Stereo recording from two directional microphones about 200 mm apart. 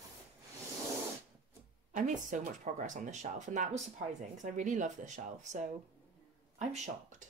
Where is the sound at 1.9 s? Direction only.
40° right (ahead or behind).